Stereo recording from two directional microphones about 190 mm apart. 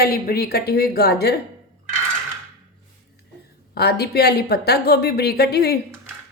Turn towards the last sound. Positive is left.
turn(degrees=55)  # may be behind; listen again after turning